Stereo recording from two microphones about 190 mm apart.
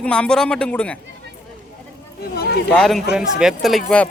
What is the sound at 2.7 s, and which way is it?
Speech, 5° left (ahead or behind).